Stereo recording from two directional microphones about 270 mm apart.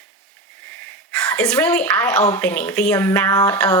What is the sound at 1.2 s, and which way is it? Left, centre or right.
A woman's voice, centre.